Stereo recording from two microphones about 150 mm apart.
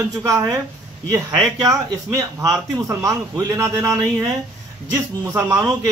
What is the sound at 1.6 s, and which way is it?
A man's voice, 25° right (ahead or behind).